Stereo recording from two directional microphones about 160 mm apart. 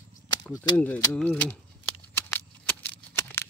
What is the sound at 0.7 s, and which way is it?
Speech, 10° left (ahead or behind).